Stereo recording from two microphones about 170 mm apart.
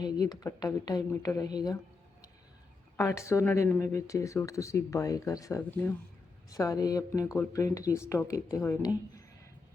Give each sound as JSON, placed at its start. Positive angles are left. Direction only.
{"t": 0.0, "sound": "speech", "side_deg": 25}
{"t": 3.0, "sound": "speech", "side_deg": 15}